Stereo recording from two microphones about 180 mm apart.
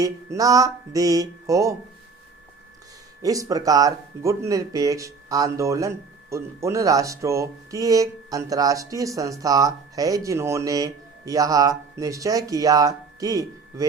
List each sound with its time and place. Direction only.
0.0 s speech: 20° right (ahead or behind)
3.2 s speech: 20° right (ahead or behind)